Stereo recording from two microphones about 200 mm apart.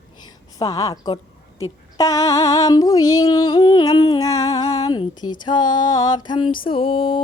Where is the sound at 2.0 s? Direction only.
15° left (ahead or behind).